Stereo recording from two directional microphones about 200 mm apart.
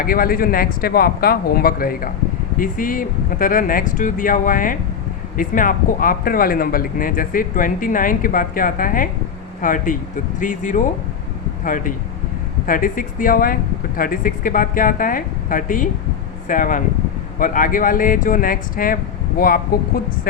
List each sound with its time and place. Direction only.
0.0 s speech: 45° left (ahead or behind)